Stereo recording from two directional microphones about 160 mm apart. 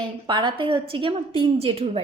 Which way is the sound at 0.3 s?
30° right (ahead or behind).